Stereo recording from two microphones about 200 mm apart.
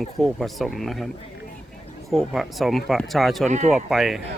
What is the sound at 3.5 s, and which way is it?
Speech, 35° right (ahead or behind).